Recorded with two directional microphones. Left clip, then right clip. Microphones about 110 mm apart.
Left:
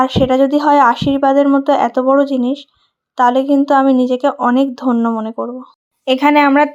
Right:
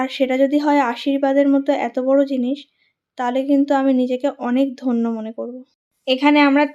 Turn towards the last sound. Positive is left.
turn(degrees=25)  # may be behind; listen again after turning